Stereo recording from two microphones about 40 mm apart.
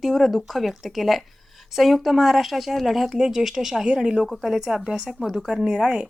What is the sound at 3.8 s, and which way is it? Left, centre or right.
Speech, right.